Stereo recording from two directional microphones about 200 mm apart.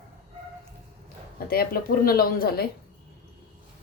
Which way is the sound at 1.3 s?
50° left (ahead or behind).